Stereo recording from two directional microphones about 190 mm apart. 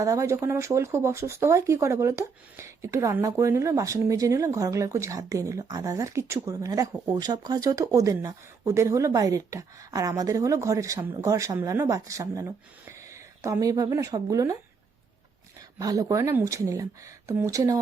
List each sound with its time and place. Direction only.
0.0 s speech: 15° right (ahead or behind)
15.8 s speech: 20° right (ahead or behind)